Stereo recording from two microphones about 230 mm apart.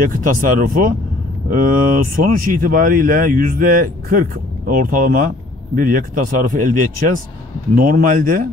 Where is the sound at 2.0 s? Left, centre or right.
Right.